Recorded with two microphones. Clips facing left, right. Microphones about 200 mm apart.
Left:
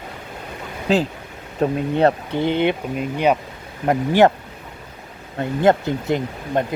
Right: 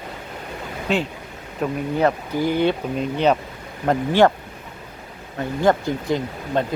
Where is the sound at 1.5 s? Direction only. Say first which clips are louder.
Left 3 dB; 35° left (ahead or behind).